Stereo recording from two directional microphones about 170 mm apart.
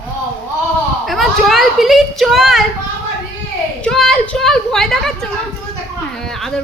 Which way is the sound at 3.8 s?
5° left (ahead or behind).